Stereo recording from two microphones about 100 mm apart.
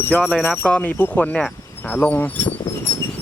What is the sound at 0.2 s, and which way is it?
Speech, 5° right (ahead or behind).